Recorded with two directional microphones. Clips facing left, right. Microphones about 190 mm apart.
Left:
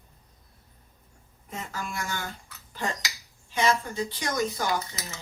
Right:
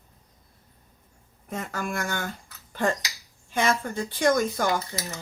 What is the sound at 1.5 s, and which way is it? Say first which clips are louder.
Speech: right 5 dB; 55° right (ahead or behind).